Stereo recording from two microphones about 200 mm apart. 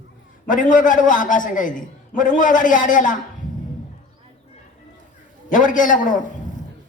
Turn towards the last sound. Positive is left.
turn(degrees=40)  # may be behind; listen again after turning